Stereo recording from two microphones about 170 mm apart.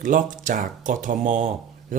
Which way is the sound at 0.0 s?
50° right (ahead or behind).